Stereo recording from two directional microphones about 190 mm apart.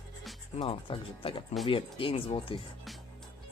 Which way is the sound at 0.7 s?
30° left (ahead or behind).